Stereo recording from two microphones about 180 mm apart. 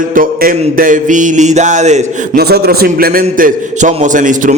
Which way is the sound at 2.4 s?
60° right (ahead or behind).